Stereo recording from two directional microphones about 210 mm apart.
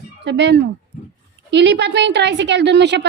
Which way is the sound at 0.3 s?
55° right (ahead or behind).